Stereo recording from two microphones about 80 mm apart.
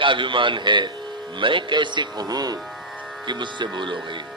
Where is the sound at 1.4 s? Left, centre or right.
Right.